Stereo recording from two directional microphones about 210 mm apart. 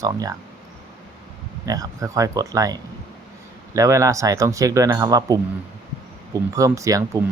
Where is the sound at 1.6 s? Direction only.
15° right (ahead or behind).